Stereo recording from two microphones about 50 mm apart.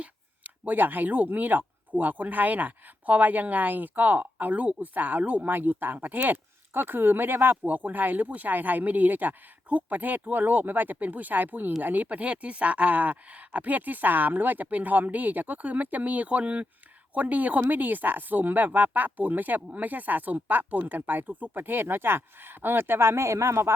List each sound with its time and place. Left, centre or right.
0.0 s speech: right